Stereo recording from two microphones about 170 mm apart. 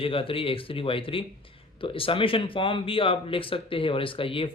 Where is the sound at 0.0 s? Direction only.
30° left (ahead or behind).